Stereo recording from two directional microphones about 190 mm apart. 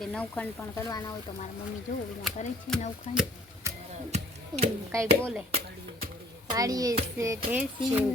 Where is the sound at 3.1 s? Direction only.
35° left (ahead or behind).